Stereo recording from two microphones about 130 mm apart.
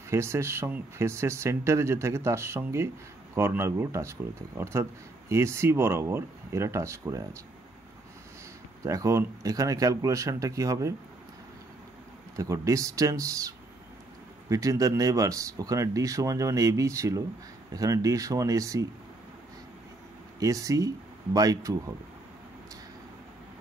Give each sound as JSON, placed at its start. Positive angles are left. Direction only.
{"t": 0.1, "sound": "speech", "side_deg": -20}
{"t": 8.8, "sound": "speech", "side_deg": -25}
{"t": 12.4, "sound": "speech", "side_deg": -25}
{"t": 20.3, "sound": "speech", "side_deg": -25}